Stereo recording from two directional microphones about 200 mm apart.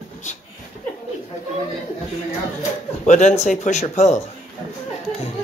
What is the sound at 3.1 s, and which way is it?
Speech, 35° left (ahead or behind).